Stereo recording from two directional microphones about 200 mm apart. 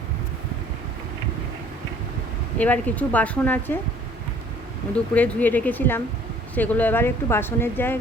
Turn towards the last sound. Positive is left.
turn(degrees=10)  # may be behind; listen again after turning